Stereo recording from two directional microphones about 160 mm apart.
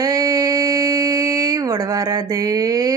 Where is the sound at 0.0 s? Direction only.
20° right (ahead or behind).